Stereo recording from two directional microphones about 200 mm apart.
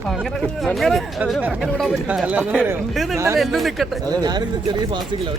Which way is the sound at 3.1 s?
15° right (ahead or behind).